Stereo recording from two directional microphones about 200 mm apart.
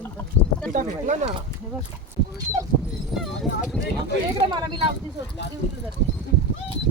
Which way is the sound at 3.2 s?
Centre (ahead or behind).